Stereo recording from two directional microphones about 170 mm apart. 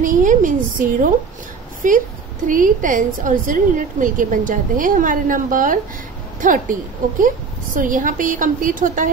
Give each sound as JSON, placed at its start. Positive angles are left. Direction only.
{"t": 0.0, "sound": "a woman's voice", "side_deg": -50}